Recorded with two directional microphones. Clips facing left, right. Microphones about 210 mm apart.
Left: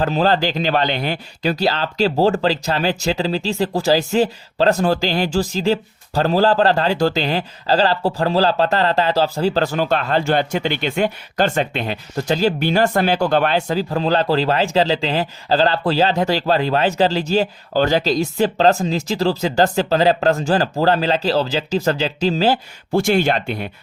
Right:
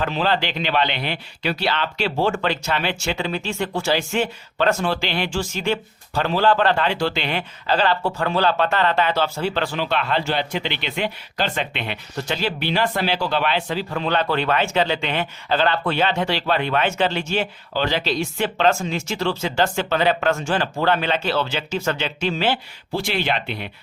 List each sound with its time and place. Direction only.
0.0 s speech: 40° left (ahead or behind)